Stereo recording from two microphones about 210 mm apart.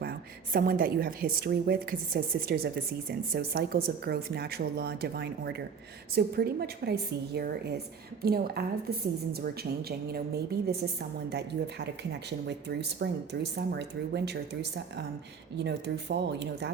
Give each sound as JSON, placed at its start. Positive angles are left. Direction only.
{"t": 0.5, "sound": "a woman's voice", "side_deg": -45}
{"t": 11.3, "sound": "a woman's voice", "side_deg": -50}